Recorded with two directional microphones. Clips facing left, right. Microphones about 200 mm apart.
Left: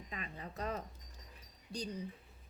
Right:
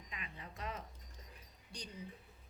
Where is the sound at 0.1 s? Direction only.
40° left (ahead or behind).